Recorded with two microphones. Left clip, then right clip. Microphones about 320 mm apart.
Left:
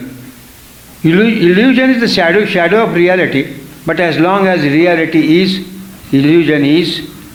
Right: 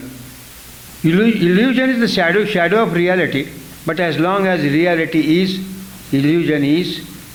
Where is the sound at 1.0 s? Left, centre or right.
Right.